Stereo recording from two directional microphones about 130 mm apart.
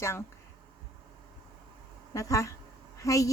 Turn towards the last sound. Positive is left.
turn(degrees=25)  # may be behind; listen again after turning